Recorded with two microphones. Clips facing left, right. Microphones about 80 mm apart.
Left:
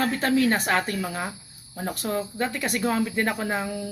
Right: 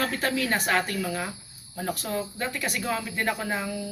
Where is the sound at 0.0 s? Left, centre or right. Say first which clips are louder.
Left 5 dB; left.